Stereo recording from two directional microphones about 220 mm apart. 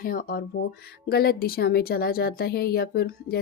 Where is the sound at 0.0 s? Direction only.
40° left (ahead or behind).